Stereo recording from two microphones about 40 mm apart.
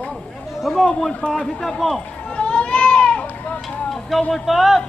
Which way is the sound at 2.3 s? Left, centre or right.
Left.